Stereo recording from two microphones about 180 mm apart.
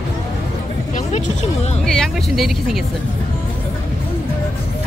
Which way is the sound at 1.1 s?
40° left (ahead or behind).